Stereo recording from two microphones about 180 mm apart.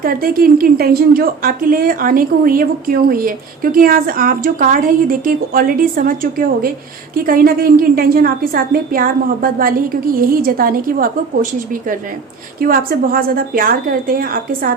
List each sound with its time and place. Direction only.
0.0 s a woman's voice: 55° right (ahead or behind)
12.5 s a woman's voice: 55° right (ahead or behind)